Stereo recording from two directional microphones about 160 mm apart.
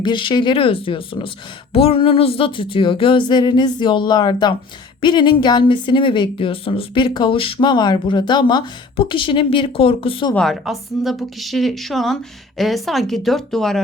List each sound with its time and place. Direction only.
0.0 s speech: 30° left (ahead or behind)
10.3 s a woman's voice: centre (ahead or behind)